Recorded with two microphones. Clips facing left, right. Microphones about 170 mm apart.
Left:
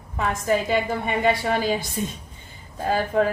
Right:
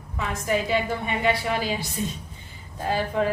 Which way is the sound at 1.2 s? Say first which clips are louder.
Left 3 dB; 45° left (ahead or behind).